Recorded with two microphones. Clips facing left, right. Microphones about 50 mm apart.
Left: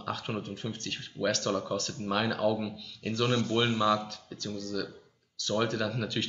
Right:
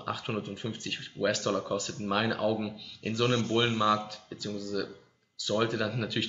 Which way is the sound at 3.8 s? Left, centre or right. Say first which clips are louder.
Even; centre.